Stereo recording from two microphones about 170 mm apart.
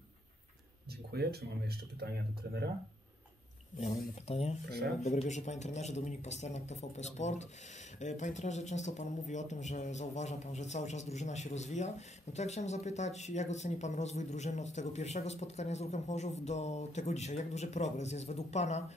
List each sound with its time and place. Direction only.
1.1 s speech: 70° right (ahead or behind)
4.1 s speech: 40° left (ahead or behind)
4.6 s speech: 70° right (ahead or behind)
5.0 s speech: 45° left (ahead or behind)